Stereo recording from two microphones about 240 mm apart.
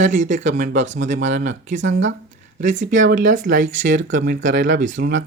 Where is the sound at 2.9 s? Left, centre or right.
Right.